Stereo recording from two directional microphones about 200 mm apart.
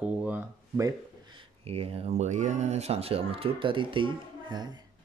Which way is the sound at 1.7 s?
30° right (ahead or behind).